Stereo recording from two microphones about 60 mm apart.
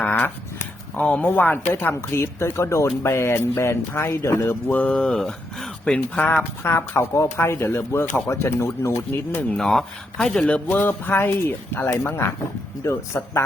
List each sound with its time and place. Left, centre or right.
0.0 s dog: left
0.9 s speech: left
1.6 s speech: left
4.4 s speech: left
4.9 s speech: centre
6.6 s speech: left
7.1 s speech: left
7.4 s speech: left
8.3 s speech: left
9.6 s speech: centre
10.8 s speech: left